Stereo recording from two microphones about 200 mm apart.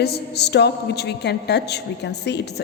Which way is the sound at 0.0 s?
55° left (ahead or behind).